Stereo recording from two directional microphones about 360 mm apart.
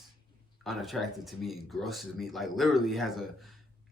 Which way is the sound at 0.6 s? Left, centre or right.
Centre.